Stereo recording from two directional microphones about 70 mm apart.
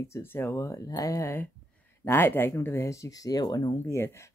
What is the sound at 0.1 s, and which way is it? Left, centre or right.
Speech, left.